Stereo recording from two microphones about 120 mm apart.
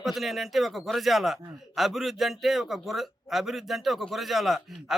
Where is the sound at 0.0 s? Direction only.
Centre (ahead or behind).